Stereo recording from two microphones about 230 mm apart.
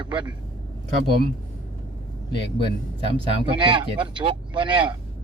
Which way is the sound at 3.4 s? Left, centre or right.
Right.